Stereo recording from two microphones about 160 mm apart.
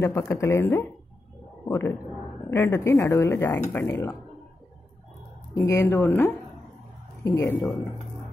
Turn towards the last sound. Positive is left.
turn(degrees=20)  # may be behind; listen again after turning